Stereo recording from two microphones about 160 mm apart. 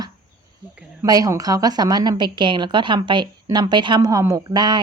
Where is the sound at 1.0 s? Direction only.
25° right (ahead or behind).